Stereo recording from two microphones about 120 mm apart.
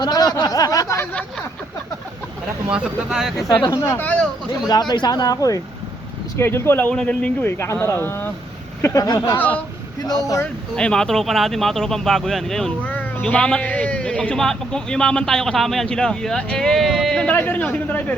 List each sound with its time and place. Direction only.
0.0 s a sound: 35° left (ahead or behind)
2.6 s speech: 5° right (ahead or behind)
3.4 s speech: 30° left (ahead or behind)
3.8 s speech: 15° left (ahead or behind)
4.7 s speech: 35° left (ahead or behind)
6.3 s speech: 20° left (ahead or behind)
7.6 s speech: 25° left (ahead or behind)
10.1 s speech: 30° left (ahead or behind)
10.4 s a man's voice: 5° left (ahead or behind)
17.3 s speech: 15° left (ahead or behind)